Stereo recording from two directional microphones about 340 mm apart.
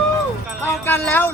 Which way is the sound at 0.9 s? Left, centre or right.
Centre.